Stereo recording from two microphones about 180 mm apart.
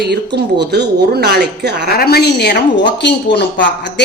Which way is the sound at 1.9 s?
60° left (ahead or behind).